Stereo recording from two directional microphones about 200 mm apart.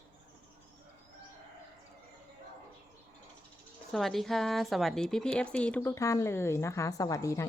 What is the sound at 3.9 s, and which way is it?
A woman's voice, centre (ahead or behind).